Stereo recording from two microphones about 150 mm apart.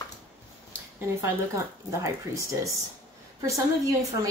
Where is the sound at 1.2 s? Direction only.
20° right (ahead or behind).